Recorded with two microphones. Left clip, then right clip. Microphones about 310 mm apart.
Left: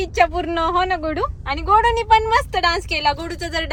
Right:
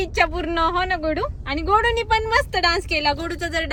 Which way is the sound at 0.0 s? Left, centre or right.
Centre.